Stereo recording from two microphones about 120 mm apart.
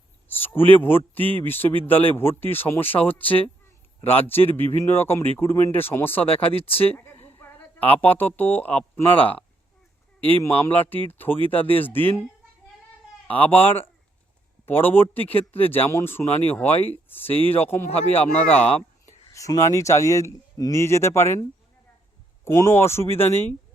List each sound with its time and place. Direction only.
0.3 s a man's voice: 15° left (ahead or behind)
6.2 s speech: 55° left (ahead or behind)
6.9 s a woman's voice: 15° left (ahead or behind)
10.6 s speech: 15° left (ahead or behind)
13.2 s speech: 15° left (ahead or behind)
19.0 s speech: 25° left (ahead or behind)
22.4 s speech: 20° left (ahead or behind)